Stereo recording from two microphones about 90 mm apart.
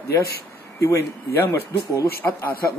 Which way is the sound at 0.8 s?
35° left (ahead or behind).